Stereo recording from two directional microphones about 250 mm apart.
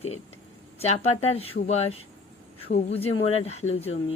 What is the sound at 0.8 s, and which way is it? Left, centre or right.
A woman's voice, left.